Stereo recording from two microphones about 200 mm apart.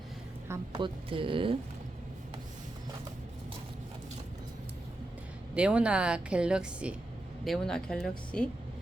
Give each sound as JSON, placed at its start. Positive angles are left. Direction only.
{"t": 0.8, "sound": "speech", "side_deg": -25}
{"t": 5.5, "sound": "a woman's voice", "side_deg": -5}